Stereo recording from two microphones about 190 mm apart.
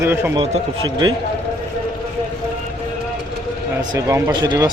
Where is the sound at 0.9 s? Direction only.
25° right (ahead or behind).